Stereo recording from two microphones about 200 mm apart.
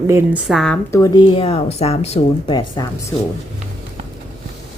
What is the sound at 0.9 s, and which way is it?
Speech, 15° left (ahead or behind).